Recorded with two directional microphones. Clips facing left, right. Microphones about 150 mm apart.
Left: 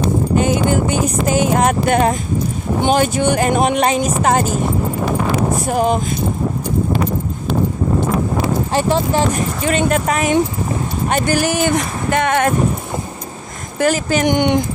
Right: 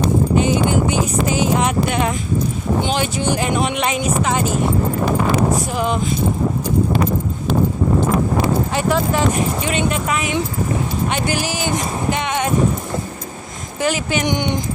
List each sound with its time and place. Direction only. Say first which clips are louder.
0.4 s speech: left 2 dB; 50° left (ahead or behind)
5.7 s speech: left 5 dB; 45° left (ahead or behind)
8.7 s speech: left 2 dB; 30° left (ahead or behind)
9.7 s speech: left 4 dB; 45° left (ahead or behind)
13.7 s speech: left 4 dB; 45° left (ahead or behind)